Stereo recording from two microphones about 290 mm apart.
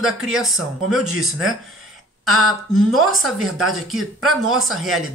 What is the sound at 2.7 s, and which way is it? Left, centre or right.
Speech, centre.